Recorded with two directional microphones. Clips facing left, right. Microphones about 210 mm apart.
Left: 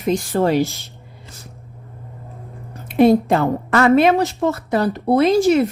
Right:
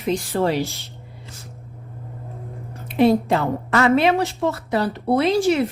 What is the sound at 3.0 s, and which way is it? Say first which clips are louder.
A woman's voice: left 3 dB; 45° left (ahead or behind).